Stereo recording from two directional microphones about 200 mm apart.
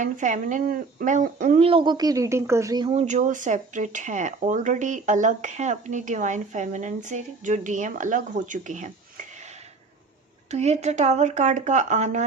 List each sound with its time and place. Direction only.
0.0 s speech: 40° right (ahead or behind); by 2.9 s 20° right (ahead or behind)
2.9 s speech: 35° right (ahead or behind)
10.5 s speech: 35° right (ahead or behind)